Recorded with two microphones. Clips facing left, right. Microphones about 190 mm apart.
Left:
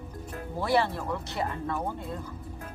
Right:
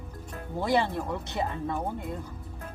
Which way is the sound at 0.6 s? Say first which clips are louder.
Even; 20° right (ahead or behind).